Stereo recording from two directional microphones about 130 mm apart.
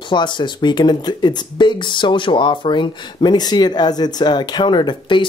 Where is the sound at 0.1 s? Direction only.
35° left (ahead or behind).